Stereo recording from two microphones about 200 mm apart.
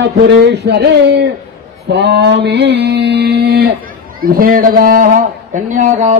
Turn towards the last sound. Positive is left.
turn(degrees=-35)  # may be behind; listen again after turning